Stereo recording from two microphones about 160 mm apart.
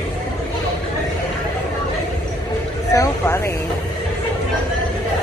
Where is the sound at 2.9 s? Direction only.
15° left (ahead or behind).